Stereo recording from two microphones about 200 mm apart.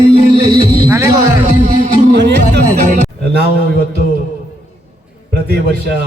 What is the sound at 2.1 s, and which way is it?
Music, 55° right (ahead or behind).